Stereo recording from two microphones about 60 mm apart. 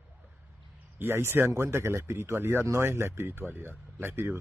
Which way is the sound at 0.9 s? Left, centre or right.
Right.